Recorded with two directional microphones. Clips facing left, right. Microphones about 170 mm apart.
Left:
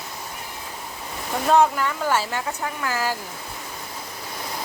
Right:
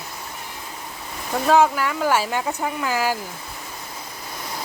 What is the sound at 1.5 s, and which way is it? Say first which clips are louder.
Speech: right 1 dB; 5° right (ahead or behind).